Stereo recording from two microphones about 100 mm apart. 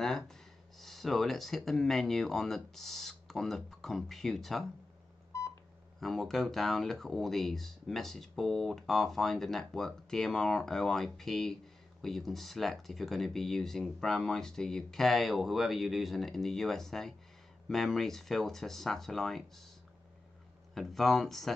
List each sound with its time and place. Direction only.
0.0 s speech: 5° left (ahead or behind)
5.3 s telephone dialing: 30° left (ahead or behind)
5.9 s speech: centre (ahead or behind)
20.7 s speech: centre (ahead or behind)